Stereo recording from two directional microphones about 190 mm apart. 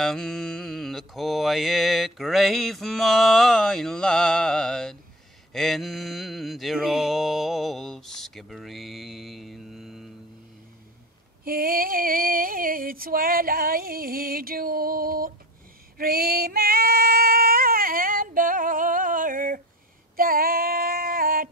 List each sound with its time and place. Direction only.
0.0 s mantra: centre (ahead or behind)
11.4 s female singing: 50° right (ahead or behind)